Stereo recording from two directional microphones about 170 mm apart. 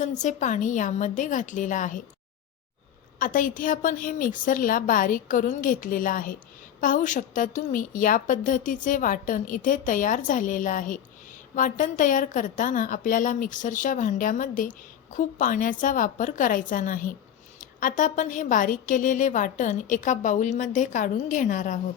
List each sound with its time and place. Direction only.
0.0 s a woman's voice: 45° left (ahead or behind)
3.2 s a woman's voice: 50° left (ahead or behind)